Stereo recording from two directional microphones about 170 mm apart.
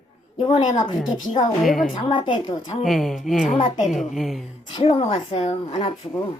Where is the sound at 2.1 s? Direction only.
30° left (ahead or behind).